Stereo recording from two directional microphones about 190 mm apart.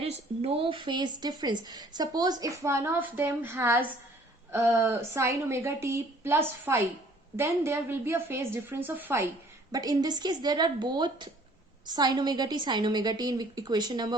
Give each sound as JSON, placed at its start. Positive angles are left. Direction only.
{"t": 0.0, "sound": "a woman's voice", "side_deg": -30}